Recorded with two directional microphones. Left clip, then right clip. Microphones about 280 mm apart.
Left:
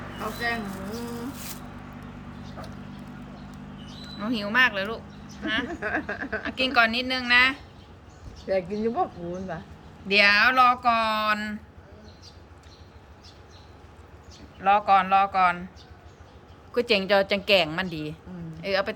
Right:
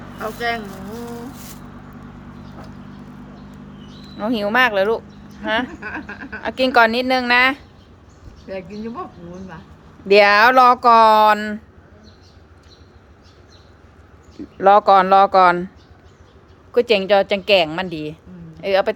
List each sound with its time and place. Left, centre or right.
0.2 s speech: centre
4.2 s speech: centre
5.6 s speech: centre
6.4 s speech: centre
8.5 s speech: centre
10.1 s speech: centre
14.6 s speech: right
16.7 s speech: centre